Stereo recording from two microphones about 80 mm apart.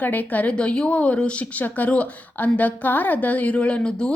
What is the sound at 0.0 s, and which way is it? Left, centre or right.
A woman's voice, left.